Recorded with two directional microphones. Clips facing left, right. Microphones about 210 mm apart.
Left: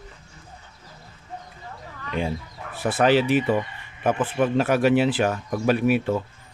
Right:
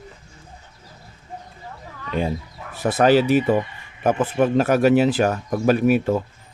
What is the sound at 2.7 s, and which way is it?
Speech, 40° right (ahead or behind).